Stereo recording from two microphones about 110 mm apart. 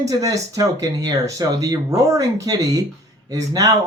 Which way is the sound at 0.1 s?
30° right (ahead or behind).